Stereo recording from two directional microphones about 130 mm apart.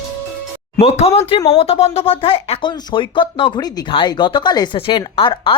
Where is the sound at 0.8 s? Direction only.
50° left (ahead or behind).